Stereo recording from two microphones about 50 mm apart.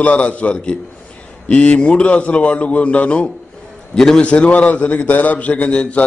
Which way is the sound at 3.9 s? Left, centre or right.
Centre.